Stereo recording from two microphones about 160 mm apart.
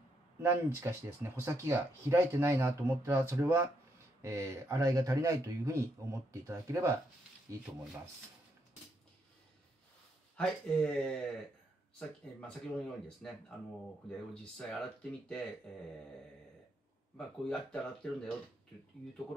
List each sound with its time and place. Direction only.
0.4 s speech: 15° right (ahead or behind)
10.3 s speech: 5° left (ahead or behind)
17.5 s speech: 5° left (ahead or behind)